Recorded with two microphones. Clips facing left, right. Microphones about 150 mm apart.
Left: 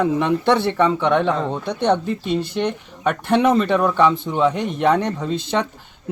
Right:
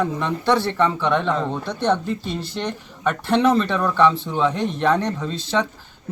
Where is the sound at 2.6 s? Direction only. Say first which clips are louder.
Left 5 dB; 15° left (ahead or behind).